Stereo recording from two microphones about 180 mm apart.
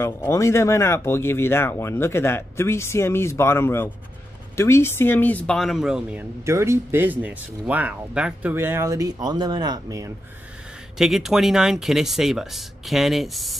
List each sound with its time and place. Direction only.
0.0 s speech: 15° left (ahead or behind); by 10.1 s 20° right (ahead or behind)
11.0 s speech: centre (ahead or behind)